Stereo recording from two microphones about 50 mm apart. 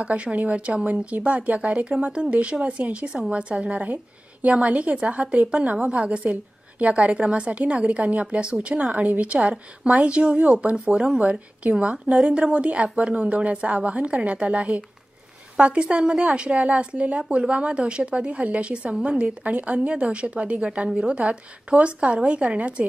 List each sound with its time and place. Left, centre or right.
0.0 s a woman's voice: right
9.5 s speech: centre
10.6 s a woman's voice: right
11.0 s speech: centre
11.7 s a woman's voice: right
12.1 s speech: centre
12.5 s a woman's voice: right
16.1 s a woman's voice: centre
22.3 s a woman's voice: right